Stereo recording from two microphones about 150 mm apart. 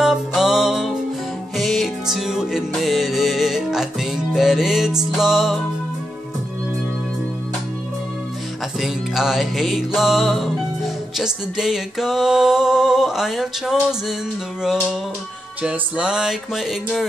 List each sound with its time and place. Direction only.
0.0 s music: 5° right (ahead or behind)
8.7 s music: centre (ahead or behind)